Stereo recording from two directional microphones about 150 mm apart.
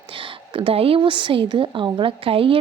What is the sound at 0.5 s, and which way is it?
A woman's voice, 40° right (ahead or behind).